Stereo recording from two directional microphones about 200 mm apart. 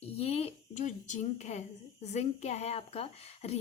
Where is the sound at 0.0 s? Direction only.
30° left (ahead or behind).